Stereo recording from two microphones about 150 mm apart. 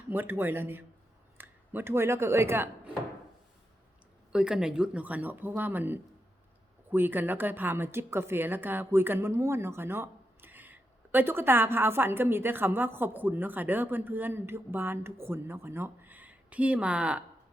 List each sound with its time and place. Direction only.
0.1 s a woman's voice: 15° right (ahead or behind)
4.3 s a woman's voice: 5° right (ahead or behind)